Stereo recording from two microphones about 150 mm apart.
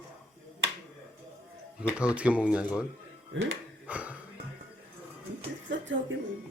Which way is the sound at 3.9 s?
10° right (ahead or behind).